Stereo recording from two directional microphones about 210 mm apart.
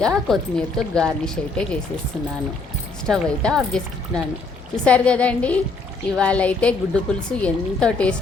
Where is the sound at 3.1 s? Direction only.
5° left (ahead or behind).